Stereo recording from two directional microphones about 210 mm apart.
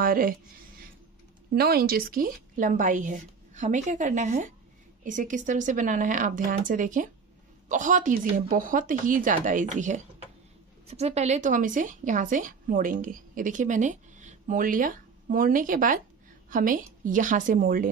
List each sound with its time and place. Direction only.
0.0 s speech: 45° right (ahead or behind)
1.5 s a woman's voice: 45° right (ahead or behind)